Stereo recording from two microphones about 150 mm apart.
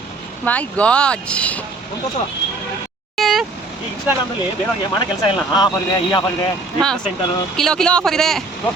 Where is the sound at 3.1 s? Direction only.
Centre (ahead or behind).